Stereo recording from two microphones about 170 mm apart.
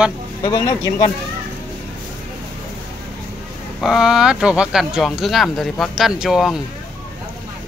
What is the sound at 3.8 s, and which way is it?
Speech, centre (ahead or behind).